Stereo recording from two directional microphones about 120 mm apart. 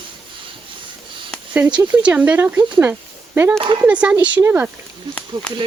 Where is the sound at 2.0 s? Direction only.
10° right (ahead or behind).